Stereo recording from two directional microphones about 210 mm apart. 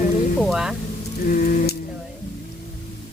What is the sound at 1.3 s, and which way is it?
Sheep, 40° left (ahead or behind).